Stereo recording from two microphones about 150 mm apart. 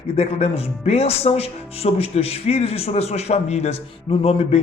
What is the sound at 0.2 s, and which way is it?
A man's voice, 45° left (ahead or behind).